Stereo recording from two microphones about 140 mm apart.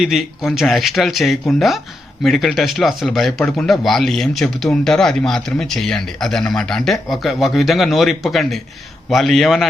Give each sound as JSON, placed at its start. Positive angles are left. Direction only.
{"t": 0.0, "sound": "speech", "side_deg": 0}